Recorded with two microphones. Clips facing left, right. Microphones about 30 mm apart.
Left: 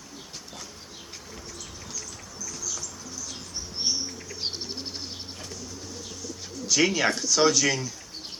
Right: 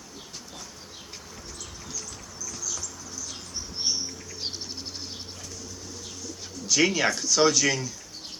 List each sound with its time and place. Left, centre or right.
2.5 s bird: centre
4.4 s bird: centre
6.2 s bird: centre
7.2 s speech: centre